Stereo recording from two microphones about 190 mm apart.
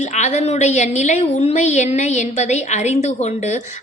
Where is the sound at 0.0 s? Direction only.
40° left (ahead or behind).